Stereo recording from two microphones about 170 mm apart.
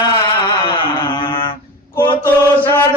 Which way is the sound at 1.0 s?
30° left (ahead or behind).